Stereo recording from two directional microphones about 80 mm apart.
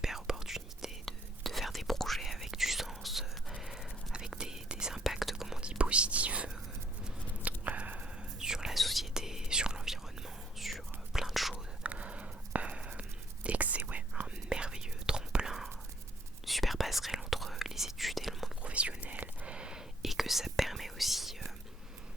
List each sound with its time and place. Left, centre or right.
0.0 s whispering: centre
11.8 s whispering: centre
18.6 s whispering: centre